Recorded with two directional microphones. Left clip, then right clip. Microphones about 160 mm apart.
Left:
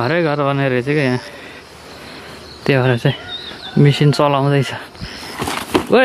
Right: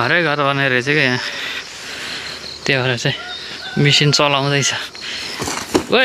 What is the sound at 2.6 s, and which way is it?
Speech, 35° left (ahead or behind).